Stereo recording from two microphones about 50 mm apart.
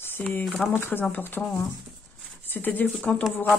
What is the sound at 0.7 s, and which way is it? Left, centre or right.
Speech, left.